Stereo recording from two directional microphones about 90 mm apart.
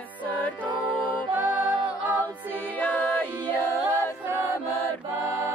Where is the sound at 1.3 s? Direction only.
20° right (ahead or behind).